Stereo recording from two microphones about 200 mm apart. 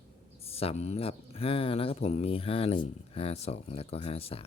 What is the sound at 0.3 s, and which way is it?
Speech, 30° left (ahead or behind).